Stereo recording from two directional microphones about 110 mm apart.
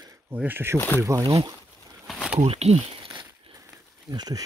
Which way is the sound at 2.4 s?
70° right (ahead or behind).